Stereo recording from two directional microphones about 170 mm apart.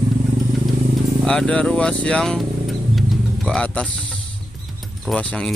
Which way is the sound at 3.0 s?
5° left (ahead or behind).